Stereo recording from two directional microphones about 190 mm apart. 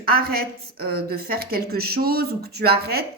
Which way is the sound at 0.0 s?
55° right (ahead or behind).